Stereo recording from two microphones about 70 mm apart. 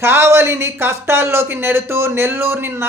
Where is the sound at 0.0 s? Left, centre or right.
Right.